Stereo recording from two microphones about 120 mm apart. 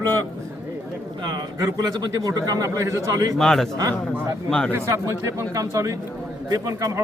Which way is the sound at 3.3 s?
5° left (ahead or behind).